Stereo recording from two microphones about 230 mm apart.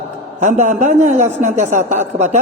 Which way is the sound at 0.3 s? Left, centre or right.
Right.